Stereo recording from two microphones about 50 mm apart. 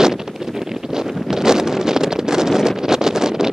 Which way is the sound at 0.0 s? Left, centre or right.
Centre.